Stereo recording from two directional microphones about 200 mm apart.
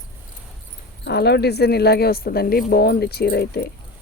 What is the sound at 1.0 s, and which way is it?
Speech, 55° left (ahead or behind).